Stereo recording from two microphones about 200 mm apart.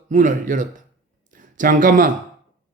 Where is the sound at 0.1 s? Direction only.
40° right (ahead or behind).